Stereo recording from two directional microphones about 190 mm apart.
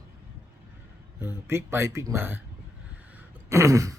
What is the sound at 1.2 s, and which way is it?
Speech, 15° right (ahead or behind).